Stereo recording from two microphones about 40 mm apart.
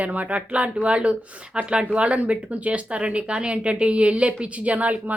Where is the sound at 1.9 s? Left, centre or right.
Right.